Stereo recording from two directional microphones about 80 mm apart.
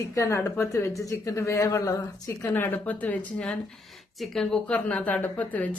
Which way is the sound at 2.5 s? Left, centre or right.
Left.